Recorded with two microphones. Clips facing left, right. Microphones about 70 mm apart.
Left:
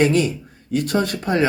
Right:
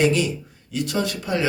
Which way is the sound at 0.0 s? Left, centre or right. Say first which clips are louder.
Left 3 dB; left.